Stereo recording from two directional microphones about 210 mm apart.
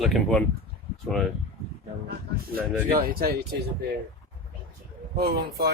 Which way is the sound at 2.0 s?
45° right (ahead or behind).